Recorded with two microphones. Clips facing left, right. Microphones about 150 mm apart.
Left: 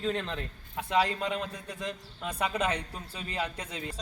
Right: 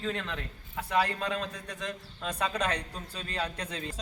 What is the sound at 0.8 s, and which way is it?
Speech, 15° left (ahead or behind).